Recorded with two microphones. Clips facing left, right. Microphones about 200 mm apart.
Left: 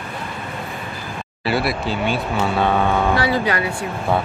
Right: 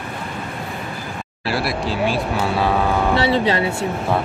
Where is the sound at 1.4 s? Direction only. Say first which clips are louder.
Left 1 dB; centre (ahead or behind).